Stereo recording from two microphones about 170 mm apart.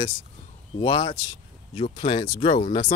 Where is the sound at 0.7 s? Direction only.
30° left (ahead or behind).